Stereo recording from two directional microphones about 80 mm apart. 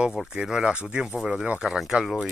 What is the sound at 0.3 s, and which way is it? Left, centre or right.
Speech, centre.